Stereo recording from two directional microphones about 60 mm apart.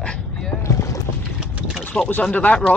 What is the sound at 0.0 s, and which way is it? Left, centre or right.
Boat, centre.